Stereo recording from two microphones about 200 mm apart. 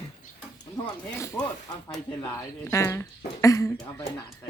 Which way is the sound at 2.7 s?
15° left (ahead or behind).